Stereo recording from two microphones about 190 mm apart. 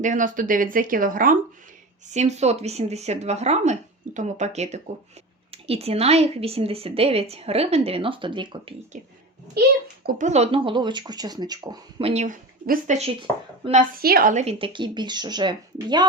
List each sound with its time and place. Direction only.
0.0 s speech: 40° right (ahead or behind)
2.0 s speech: 35° right (ahead or behind)
10.1 s speech: 40° right (ahead or behind); by 16.0 s 25° right (ahead or behind)